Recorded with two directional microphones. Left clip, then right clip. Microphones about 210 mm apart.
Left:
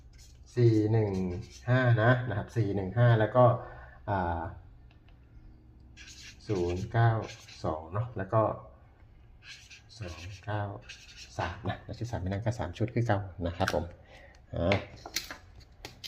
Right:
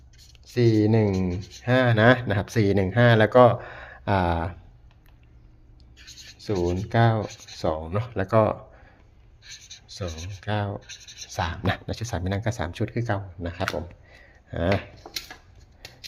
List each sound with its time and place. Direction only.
0.5 s speech: 55° right (ahead or behind)
6.4 s speech: 50° right (ahead or behind)
10.4 s speech: 55° right (ahead or behind)
11.6 s speech: 40° right (ahead or behind); by 14.7 s 15° right (ahead or behind)
15.1 s a sound: 25° right (ahead or behind)